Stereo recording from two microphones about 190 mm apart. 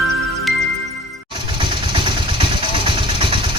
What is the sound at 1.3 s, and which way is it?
Vehicle, 25° right (ahead or behind).